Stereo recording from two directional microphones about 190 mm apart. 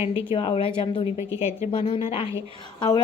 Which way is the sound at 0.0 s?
30° left (ahead or behind).